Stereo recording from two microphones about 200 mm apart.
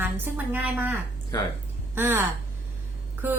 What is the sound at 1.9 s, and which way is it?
A woman's voice, 10° right (ahead or behind).